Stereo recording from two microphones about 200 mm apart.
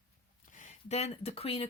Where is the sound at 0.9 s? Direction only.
35° left (ahead or behind).